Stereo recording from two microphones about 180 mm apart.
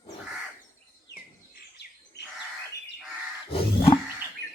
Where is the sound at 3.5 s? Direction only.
30° left (ahead or behind).